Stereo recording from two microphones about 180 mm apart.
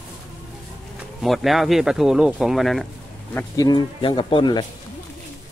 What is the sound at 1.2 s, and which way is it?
Speech, centre (ahead or behind).